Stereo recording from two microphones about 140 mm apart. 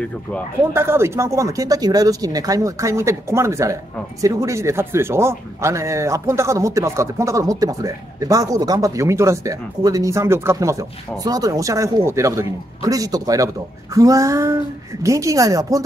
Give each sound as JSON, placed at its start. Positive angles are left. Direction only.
{"t": 0.7, "sound": "speech", "side_deg": -20}